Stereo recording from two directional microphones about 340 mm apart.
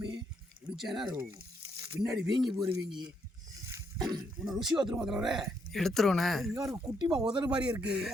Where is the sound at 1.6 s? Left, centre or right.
Centre.